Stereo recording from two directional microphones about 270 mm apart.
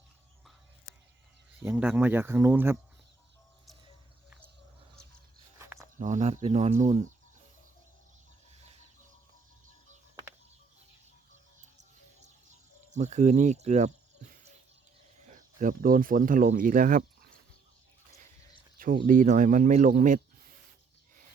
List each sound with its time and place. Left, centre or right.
1.5 s speech: centre
5.5 s a sound: centre
6.0 s speech: right
8.5 s chicken: right
11.6 s music: right
12.9 s speech: right
18.8 s speech: right